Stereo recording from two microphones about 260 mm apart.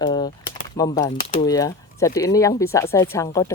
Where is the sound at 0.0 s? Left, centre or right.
Centre.